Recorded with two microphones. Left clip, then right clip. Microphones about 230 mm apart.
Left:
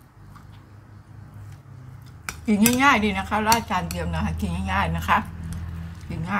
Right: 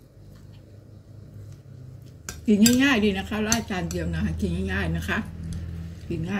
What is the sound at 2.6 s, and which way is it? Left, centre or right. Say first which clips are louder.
Cutlery: left 4 dB; left.